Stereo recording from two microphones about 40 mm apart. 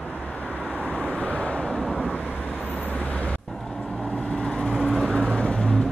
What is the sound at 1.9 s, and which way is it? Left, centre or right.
Vehicle, left.